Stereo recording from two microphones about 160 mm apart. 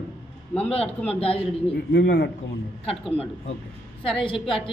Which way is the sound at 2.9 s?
35° left (ahead or behind).